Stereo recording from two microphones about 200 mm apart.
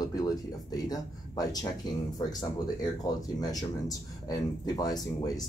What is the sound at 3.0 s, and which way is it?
Speech, 20° left (ahead or behind).